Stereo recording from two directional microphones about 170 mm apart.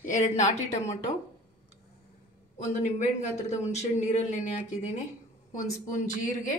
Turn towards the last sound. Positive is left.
turn(degrees=50)  # may be behind; listen again after turning